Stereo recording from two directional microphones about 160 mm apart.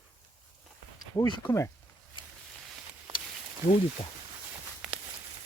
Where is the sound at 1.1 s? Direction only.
20° left (ahead or behind).